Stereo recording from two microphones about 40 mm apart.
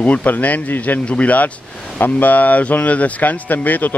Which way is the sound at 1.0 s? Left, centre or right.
Left.